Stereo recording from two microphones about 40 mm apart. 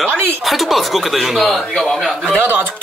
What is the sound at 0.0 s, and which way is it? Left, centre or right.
Speech, right.